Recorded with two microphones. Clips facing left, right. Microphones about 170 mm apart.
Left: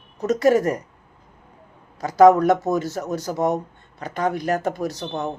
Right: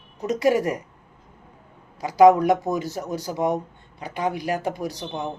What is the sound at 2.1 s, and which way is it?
A woman's voice, 15° right (ahead or behind).